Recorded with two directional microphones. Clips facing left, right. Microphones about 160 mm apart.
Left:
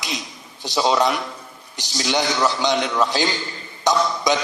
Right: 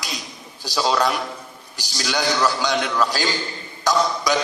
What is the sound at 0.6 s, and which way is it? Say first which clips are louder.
Mantra: left 2 dB; 20° left (ahead or behind).